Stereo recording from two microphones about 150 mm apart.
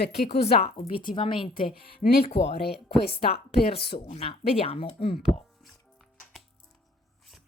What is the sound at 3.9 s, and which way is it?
Speech, 40° left (ahead or behind).